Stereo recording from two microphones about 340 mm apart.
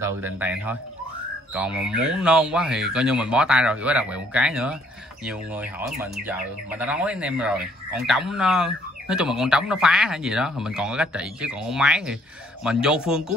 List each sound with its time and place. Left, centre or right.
0.0 s speech: centre